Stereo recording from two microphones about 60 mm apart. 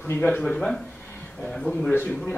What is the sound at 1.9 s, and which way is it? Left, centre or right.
Speech, left.